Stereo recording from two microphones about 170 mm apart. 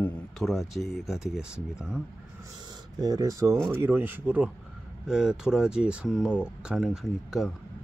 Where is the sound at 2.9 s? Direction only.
20° right (ahead or behind).